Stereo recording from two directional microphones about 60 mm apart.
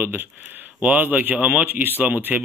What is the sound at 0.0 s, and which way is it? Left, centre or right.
A man's voice, right.